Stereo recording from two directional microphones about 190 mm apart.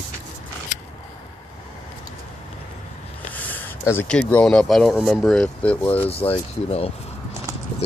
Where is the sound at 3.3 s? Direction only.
10° left (ahead or behind).